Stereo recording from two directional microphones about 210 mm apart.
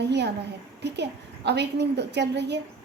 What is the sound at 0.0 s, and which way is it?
A woman's voice, 55° right (ahead or behind).